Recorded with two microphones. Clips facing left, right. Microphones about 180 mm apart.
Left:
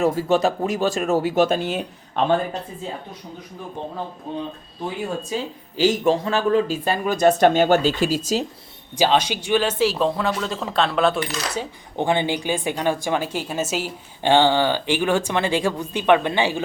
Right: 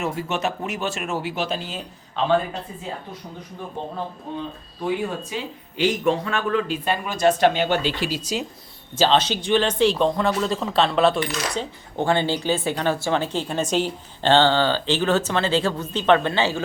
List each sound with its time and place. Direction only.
0.0 s speech: 35° left (ahead or behind); by 2.3 s 60° left (ahead or behind)
5.3 s speech: 35° left (ahead or behind)
9.0 s speech: 10° left (ahead or behind)
11.9 s speech: 15° left (ahead or behind)